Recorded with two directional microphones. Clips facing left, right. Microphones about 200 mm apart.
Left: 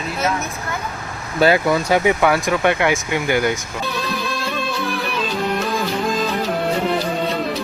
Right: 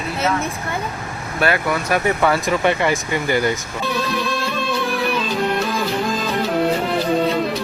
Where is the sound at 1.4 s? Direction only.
25° left (ahead or behind).